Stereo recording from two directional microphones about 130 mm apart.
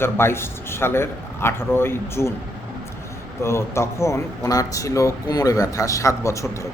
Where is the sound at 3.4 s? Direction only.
20° left (ahead or behind).